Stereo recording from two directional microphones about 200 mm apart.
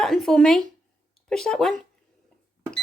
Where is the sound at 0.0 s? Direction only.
Centre (ahead or behind).